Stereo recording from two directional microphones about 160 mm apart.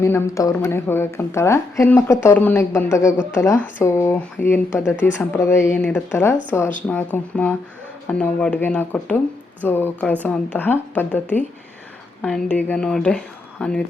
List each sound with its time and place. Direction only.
0.0 s a woman's voice: 15° left (ahead or behind)